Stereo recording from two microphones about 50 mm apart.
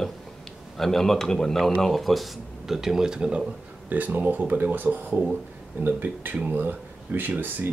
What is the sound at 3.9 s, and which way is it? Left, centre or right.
Speech, right.